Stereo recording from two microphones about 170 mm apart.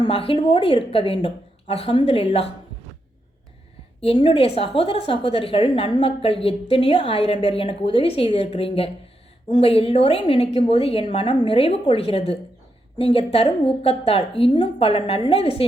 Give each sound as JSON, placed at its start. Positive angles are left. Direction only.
{"t": 0.0, "sound": "a woman's voice", "side_deg": 30}
{"t": 4.0, "sound": "a woman's voice", "side_deg": 30}